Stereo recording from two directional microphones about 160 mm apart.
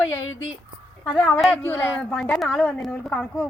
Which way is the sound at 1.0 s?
5° left (ahead or behind).